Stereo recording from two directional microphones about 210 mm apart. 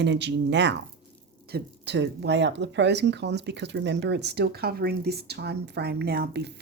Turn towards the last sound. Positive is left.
turn(degrees=-50)  # may be behind; listen again after turning